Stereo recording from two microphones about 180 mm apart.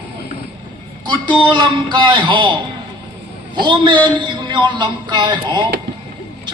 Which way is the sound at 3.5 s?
25° right (ahead or behind).